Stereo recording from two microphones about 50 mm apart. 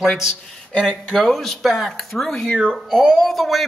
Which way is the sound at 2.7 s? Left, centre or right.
Centre.